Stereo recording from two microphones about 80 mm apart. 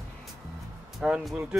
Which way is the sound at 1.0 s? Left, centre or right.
Centre.